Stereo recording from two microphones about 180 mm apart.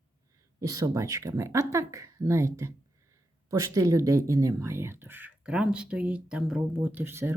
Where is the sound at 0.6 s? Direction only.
20° right (ahead or behind).